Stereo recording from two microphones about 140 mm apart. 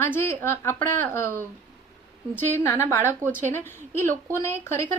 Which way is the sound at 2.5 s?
15° left (ahead or behind).